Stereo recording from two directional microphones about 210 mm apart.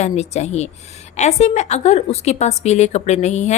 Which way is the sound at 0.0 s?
30° left (ahead or behind).